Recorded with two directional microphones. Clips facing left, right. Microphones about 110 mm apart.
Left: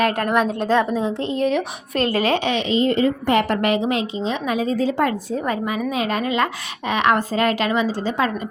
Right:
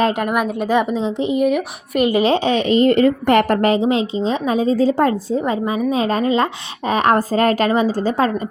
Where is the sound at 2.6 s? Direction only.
60° right (ahead or behind).